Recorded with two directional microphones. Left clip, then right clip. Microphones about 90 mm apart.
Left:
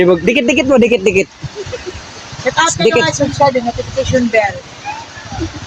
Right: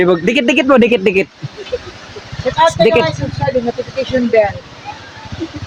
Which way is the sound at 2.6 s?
5° right (ahead or behind).